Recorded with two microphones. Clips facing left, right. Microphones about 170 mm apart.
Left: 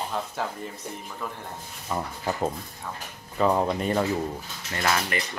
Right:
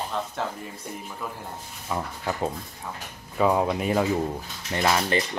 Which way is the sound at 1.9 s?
5° left (ahead or behind).